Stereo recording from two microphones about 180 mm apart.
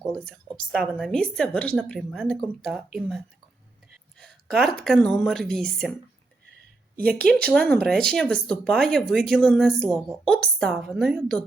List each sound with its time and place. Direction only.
0.1 s a woman's voice: 5° left (ahead or behind)
6.9 s speech: 55° right (ahead or behind)
7.4 s a woman's voice: 5° left (ahead or behind)